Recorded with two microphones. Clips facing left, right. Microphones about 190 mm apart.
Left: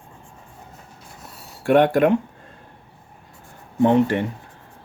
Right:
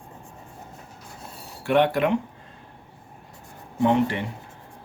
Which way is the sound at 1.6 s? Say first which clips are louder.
Left 5 dB; 50° left (ahead or behind).